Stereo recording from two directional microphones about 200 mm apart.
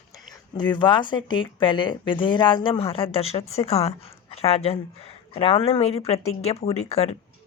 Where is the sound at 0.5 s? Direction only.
20° left (ahead or behind).